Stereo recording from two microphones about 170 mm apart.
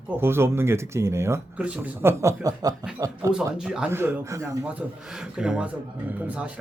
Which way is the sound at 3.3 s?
5° right (ahead or behind).